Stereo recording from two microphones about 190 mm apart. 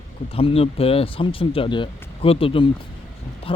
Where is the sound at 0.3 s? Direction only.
30° left (ahead or behind).